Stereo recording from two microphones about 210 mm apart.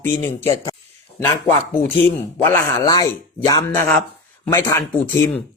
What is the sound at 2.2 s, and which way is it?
Speech, 10° left (ahead or behind).